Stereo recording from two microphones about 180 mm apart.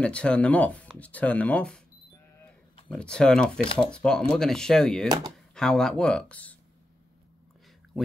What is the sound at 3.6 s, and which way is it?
Speech, 30° left (ahead or behind).